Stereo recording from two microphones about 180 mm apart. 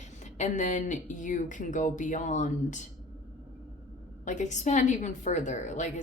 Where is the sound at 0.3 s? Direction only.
40° left (ahead or behind).